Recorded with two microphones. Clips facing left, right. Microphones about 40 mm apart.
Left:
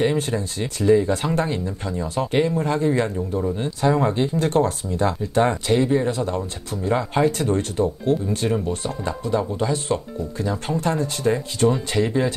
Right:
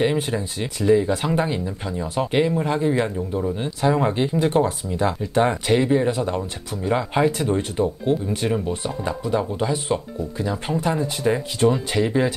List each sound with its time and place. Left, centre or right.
0.0 s speech: centre